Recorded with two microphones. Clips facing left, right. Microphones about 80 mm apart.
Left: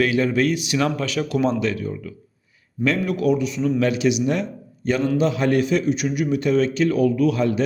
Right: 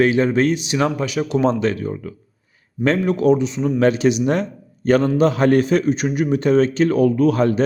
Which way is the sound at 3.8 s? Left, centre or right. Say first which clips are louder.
Right 6 dB; right.